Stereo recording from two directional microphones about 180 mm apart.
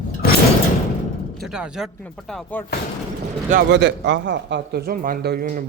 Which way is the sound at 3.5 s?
65° right (ahead or behind).